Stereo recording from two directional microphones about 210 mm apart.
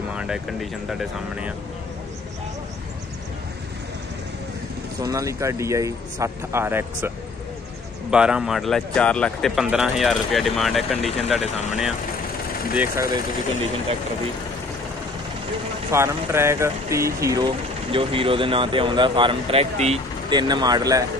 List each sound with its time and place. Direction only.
0.1 s speech: 5° right (ahead or behind)
5.0 s speech: 15° right (ahead or behind)
8.1 s speech: 5° right (ahead or behind)
12.7 s speech: 10° right (ahead or behind)
15.9 s speech: 10° right (ahead or behind)
17.9 s speech: 25° right (ahead or behind)